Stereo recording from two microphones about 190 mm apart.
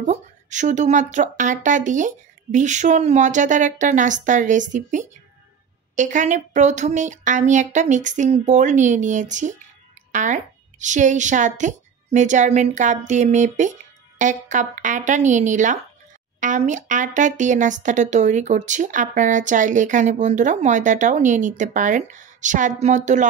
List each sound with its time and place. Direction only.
0.0 s speech: 40° right (ahead or behind)